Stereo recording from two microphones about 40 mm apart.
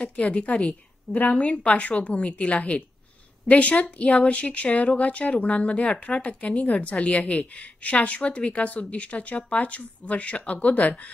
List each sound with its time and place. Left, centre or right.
0.1 s a woman's voice: left